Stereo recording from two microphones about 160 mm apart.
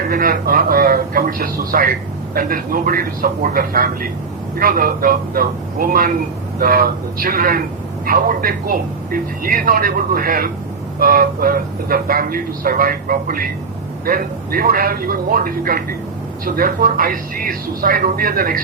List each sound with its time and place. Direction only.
0.1 s speech: 65° right (ahead or behind)